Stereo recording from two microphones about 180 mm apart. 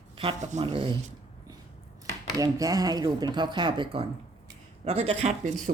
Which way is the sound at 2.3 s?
20° right (ahead or behind).